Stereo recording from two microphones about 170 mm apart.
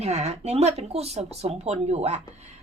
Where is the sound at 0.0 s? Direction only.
40° right (ahead or behind).